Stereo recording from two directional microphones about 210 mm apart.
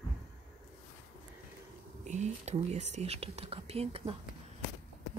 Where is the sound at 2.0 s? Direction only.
35° right (ahead or behind).